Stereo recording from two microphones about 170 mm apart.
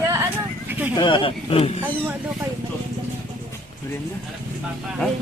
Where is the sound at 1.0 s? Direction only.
30° left (ahead or behind).